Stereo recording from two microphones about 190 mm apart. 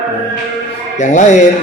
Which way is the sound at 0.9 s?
40° left (ahead or behind).